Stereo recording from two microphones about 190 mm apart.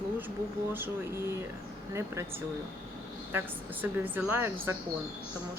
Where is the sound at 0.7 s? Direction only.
10° right (ahead or behind).